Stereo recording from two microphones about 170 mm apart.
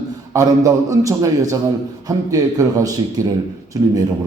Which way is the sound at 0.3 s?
20° right (ahead or behind).